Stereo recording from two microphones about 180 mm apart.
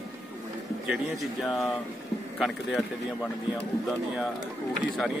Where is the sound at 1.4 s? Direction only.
Centre (ahead or behind).